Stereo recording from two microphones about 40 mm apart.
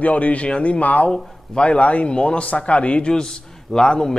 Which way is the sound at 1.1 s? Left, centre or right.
Left.